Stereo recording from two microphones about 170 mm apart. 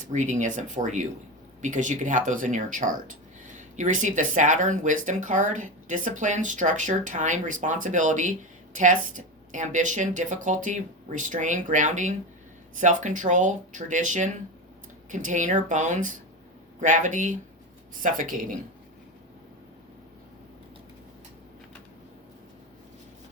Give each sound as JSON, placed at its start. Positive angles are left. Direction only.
{"t": 0.0, "sound": "speech", "side_deg": -45}